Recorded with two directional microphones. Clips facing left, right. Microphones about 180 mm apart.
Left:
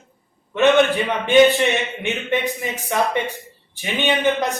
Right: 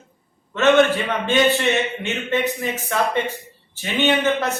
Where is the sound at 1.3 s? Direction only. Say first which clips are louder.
Left 5 dB; 15° left (ahead or behind).